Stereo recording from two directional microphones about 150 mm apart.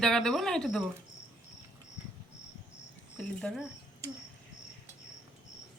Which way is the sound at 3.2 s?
5° left (ahead or behind).